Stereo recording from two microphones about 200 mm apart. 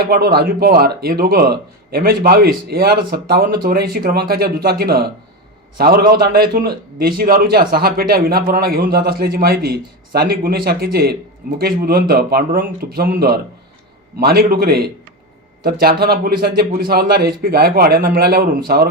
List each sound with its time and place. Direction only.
0.0 s a man's voice: 50° right (ahead or behind)